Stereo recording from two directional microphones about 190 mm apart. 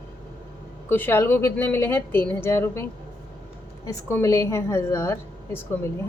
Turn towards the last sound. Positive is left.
turn(degrees=10)  # may be behind; listen again after turning